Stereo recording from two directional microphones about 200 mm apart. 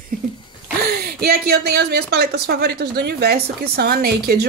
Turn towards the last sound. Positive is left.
turn(degrees=-50)  # may be behind; listen again after turning